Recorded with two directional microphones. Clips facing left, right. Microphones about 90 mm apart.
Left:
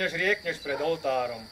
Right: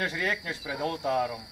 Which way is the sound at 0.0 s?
20° right (ahead or behind).